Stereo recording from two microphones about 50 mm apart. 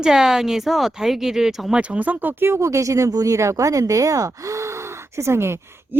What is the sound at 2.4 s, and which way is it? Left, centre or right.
Speech, right.